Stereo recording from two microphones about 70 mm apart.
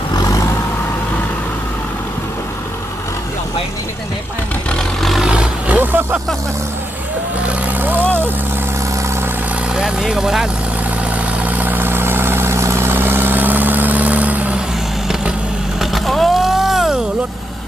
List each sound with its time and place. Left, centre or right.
0.1 s vehicle: left
4.8 s vehicle: centre
5.2 s roar: centre
7.4 s vehicle: right
9.7 s vehicle: centre
11.4 s vehicle: right
15.8 s vehicle: centre